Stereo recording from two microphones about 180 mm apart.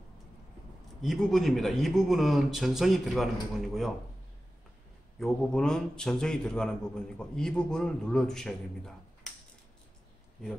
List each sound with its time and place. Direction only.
1.0 s speech: centre (ahead or behind)
5.2 s speech: 5° left (ahead or behind)